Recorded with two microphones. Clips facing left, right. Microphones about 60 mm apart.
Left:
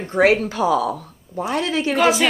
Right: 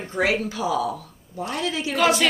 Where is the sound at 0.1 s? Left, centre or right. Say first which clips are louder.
Left 7 dB; left.